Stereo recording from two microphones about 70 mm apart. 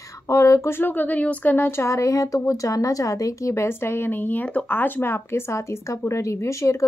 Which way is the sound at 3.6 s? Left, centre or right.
Left.